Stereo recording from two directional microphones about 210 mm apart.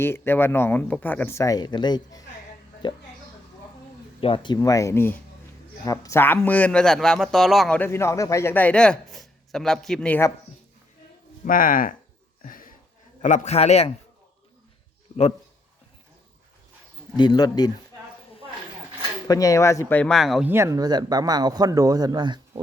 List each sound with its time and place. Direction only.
0.0 s speech: 10° left (ahead or behind)
4.2 s a man's voice: 25° left (ahead or behind)
11.4 s a man's voice: 40° left (ahead or behind)
12.4 s a sound: 40° left (ahead or behind)
13.2 s a man's voice: 35° left (ahead or behind)
15.1 s a sound: 20° left (ahead or behind)
17.2 s speech: 20° left (ahead or behind)
19.3 s speech: 15° left (ahead or behind); by 22.6 s 20° right (ahead or behind)